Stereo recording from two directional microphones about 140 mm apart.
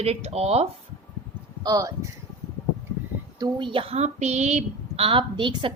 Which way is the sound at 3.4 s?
35° right (ahead or behind).